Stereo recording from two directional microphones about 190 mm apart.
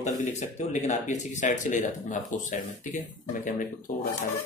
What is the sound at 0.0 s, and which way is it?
Speech, 40° left (ahead or behind).